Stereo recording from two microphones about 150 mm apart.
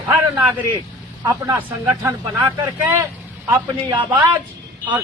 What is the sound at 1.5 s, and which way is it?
Speech, 15° right (ahead or behind).